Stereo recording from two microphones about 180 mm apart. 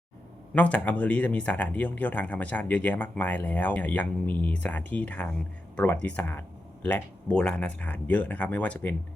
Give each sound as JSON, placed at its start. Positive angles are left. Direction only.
{"t": 0.5, "sound": "speech", "side_deg": 10}